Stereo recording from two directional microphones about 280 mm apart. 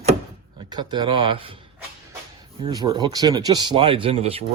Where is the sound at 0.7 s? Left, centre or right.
Centre.